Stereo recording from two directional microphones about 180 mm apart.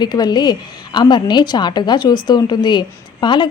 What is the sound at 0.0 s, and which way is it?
A woman's voice, 25° left (ahead or behind).